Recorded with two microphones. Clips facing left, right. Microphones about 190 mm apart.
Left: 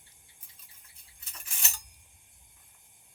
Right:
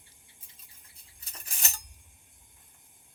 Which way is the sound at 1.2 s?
40° right (ahead or behind).